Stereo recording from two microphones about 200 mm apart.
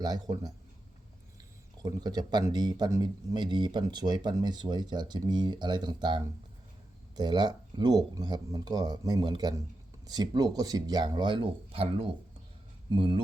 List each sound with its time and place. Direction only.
0.0 s speech: 20° right (ahead or behind)
1.8 s speech: 20° right (ahead or behind)